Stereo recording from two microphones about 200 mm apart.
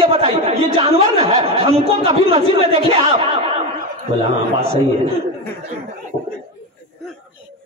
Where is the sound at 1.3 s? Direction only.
30° right (ahead or behind).